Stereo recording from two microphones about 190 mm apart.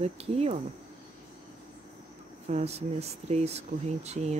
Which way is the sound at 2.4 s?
35° right (ahead or behind).